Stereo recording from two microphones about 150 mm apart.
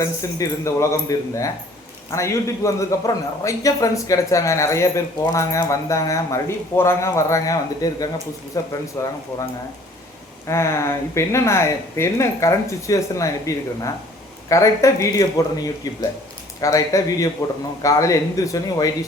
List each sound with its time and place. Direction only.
0.0 s speech: 20° left (ahead or behind)
10.4 s speech: 20° left (ahead or behind)